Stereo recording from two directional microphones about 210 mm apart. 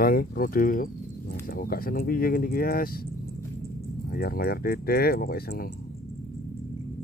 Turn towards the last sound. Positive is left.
turn(degrees=45)  # may be behind; listen again after turning